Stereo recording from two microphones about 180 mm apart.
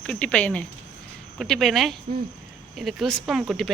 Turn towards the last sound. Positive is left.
turn(degrees=0)  # may be behind; listen again after turning